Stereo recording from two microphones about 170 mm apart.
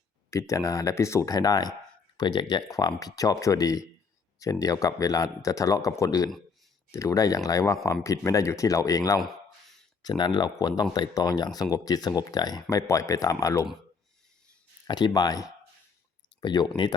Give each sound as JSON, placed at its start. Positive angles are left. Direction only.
{"t": 0.3, "sound": "speech", "side_deg": 20}
{"t": 14.8, "sound": "speech", "side_deg": 25}